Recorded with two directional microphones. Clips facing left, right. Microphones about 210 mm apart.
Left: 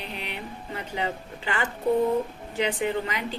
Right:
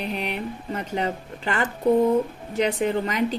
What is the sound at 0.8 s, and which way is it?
A woman's voice, 45° right (ahead or behind).